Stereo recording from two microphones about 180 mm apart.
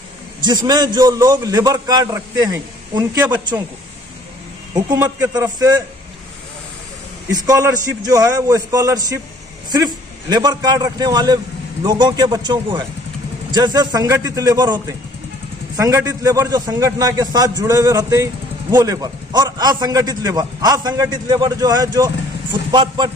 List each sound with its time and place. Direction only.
0.5 s a man's voice: 25° right (ahead or behind)
4.8 s a man's voice: 15° right (ahead or behind)
7.3 s a man's voice: 20° right (ahead or behind)